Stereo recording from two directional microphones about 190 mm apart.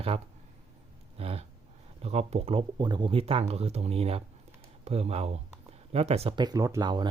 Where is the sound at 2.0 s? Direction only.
35° right (ahead or behind).